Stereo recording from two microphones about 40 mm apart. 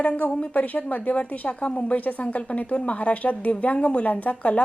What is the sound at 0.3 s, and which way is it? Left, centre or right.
Speech, left.